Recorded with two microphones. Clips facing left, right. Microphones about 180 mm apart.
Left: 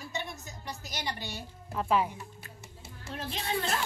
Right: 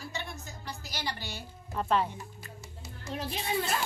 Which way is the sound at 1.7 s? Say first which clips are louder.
Left 1 dB; 10° left (ahead or behind).